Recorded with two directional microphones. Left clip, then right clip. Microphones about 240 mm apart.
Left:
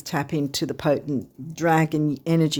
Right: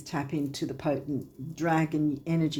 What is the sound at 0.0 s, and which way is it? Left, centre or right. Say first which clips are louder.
Speech: left 6 dB; left.